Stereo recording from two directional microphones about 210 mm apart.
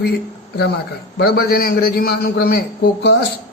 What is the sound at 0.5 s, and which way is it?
A man's voice, 50° left (ahead or behind).